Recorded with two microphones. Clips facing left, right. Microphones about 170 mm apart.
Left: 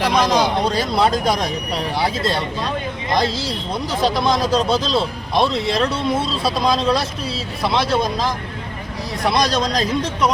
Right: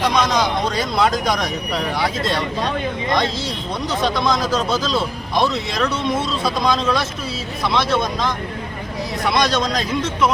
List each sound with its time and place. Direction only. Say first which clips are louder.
0.2 s speech: left 2 dB; 30° left (ahead or behind)
9.3 s speech: even; 35° left (ahead or behind)